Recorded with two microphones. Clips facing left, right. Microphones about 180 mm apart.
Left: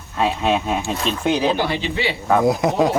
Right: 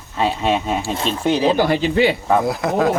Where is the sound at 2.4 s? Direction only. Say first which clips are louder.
Left 2 dB; 20° left (ahead or behind).